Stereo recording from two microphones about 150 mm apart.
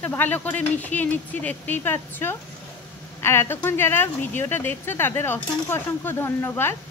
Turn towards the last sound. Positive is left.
turn(degrees=15)  # may be behind; listen again after turning